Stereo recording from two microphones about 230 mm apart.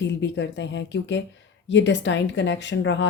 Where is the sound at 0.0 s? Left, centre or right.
Left.